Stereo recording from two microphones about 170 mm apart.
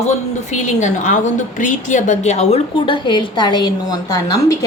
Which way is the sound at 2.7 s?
30° left (ahead or behind).